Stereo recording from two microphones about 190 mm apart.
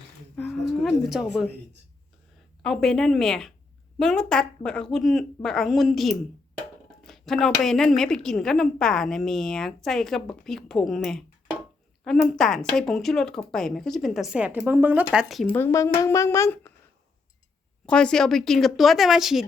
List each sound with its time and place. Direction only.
0.4 s a sound: 5° left (ahead or behind)
0.7 s speech: centre (ahead or behind)
2.6 s a woman's voice: centre (ahead or behind)
15.4 s speech: 10° left (ahead or behind)
17.8 s a woman's voice: 5° left (ahead or behind)